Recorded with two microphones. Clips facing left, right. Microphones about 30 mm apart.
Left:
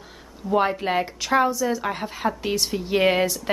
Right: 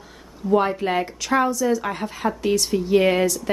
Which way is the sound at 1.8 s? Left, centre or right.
Centre.